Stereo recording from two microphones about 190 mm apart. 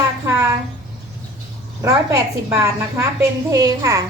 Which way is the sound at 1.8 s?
15° right (ahead or behind).